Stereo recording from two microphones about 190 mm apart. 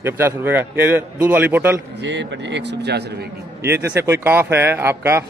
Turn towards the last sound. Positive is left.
turn(degrees=-15)  # may be behind; listen again after turning